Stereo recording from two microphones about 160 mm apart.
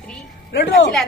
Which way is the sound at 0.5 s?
80° left.